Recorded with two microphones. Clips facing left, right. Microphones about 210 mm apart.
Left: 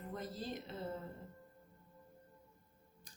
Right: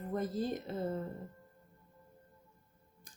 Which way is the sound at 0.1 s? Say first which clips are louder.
Right 9 dB; 50° right (ahead or behind).